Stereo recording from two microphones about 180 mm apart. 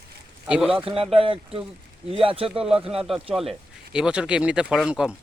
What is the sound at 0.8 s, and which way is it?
Speech, 30° right (ahead or behind).